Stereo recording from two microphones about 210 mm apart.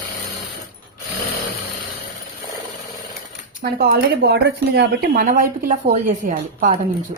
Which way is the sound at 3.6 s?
45° right (ahead or behind).